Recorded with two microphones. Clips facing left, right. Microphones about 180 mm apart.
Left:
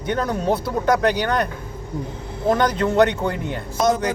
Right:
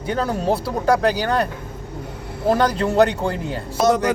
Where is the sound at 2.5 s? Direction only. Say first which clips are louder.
Right 1 dB; 35° right (ahead or behind).